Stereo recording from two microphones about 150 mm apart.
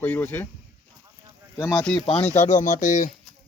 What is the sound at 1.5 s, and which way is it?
Speech, 15° left (ahead or behind).